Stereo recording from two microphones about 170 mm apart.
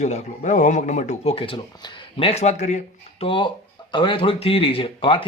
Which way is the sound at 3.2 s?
30° left (ahead or behind).